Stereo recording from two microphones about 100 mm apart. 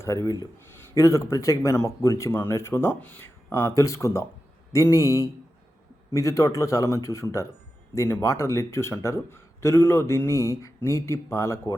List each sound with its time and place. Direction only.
0.0 s speech: 35° left (ahead or behind)